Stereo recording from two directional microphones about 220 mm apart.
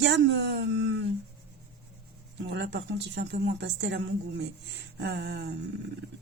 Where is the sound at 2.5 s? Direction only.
55° right (ahead or behind).